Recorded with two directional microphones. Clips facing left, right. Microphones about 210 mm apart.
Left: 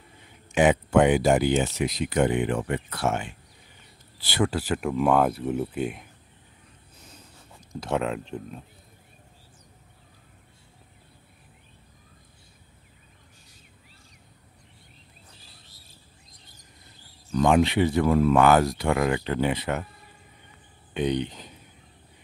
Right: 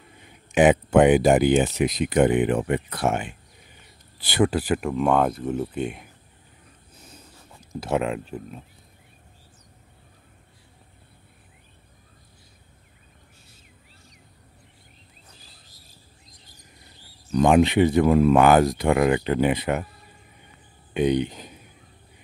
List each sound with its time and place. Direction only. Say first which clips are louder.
0.5 s speech: right 3 dB; 15° right (ahead or behind)
4.7 s speech: left 1 dB; centre (ahead or behind)
7.8 s speech: right 2 dB; 5° right (ahead or behind)
17.3 s speech: right 3 dB; 20° right (ahead or behind)
20.9 s speech: right 4 dB; 10° right (ahead or behind)